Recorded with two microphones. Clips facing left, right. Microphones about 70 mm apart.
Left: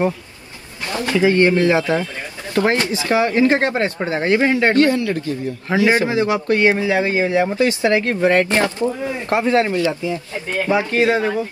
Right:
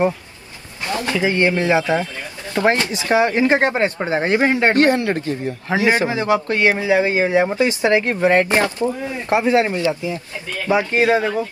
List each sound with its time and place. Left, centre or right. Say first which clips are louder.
0.8 s a sound: right 1 dB; right
1.2 s speech: left 4 dB; right
6.2 s speech: right 2 dB; left
6.5 s speech: left 2 dB; right
10.1 s speech: left 5 dB; left
10.9 s speech: even; right